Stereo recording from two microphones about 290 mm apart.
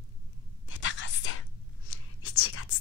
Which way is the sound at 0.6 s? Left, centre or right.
Left.